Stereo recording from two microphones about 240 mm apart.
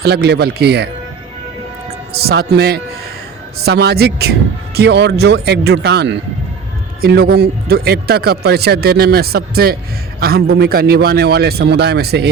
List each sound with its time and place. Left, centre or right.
0.0 s speech: right
2.1 s speech: right